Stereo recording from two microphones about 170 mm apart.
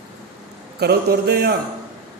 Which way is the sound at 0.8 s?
70° right (ahead or behind).